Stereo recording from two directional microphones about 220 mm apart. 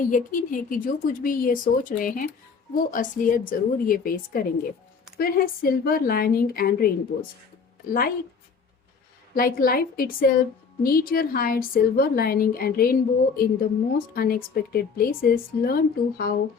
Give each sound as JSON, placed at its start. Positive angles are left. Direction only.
{"t": 0.0, "sound": "speech", "side_deg": 40}
{"t": 9.3, "sound": "a woman's voice", "side_deg": 40}